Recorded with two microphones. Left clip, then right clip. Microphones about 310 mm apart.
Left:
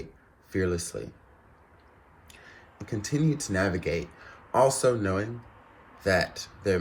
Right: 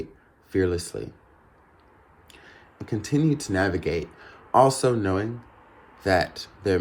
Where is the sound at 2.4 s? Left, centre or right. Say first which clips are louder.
Right 3 dB; right.